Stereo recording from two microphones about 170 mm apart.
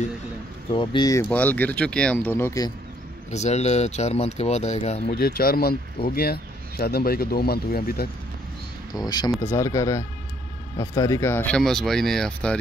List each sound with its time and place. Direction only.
0.7 s speech: 25° left (ahead or behind)
1.3 s speech: 10° left (ahead or behind)
3.3 s speech: 40° left (ahead or behind)
5.1 s speech: 60° left (ahead or behind)
8.9 s speech: 25° left (ahead or behind); by 12.5 s 5° left (ahead or behind)